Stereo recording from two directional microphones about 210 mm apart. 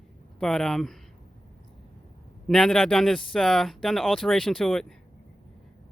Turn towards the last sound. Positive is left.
turn(degrees=0)  # may be behind; listen again after turning